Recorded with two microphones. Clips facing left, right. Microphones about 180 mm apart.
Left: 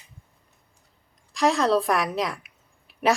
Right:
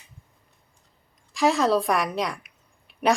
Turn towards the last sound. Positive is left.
turn(degrees=0)  # may be behind; listen again after turning